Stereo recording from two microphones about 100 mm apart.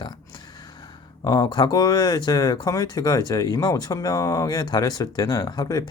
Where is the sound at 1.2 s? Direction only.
40° left (ahead or behind).